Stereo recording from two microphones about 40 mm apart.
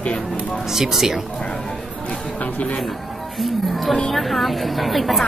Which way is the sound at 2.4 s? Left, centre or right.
Left.